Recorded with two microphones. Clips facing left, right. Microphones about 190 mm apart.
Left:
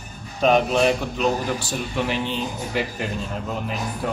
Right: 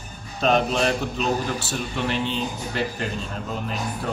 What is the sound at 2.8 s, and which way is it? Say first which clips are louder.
Speech: left 1 dB; 10° left (ahead or behind).